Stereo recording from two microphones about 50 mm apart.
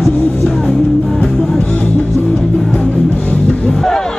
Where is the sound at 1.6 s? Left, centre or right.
Left.